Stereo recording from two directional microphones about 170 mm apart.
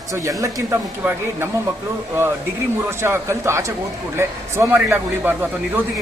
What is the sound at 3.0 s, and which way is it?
Speech, 15° right (ahead or behind).